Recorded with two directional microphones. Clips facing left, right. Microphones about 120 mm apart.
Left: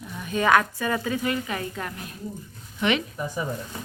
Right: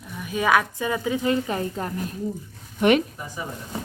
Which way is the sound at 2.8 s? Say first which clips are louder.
Right 6 dB; 50° right (ahead or behind).